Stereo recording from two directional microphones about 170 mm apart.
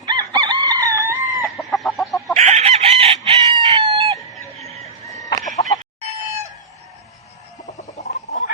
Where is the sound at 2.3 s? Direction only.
40° right (ahead or behind).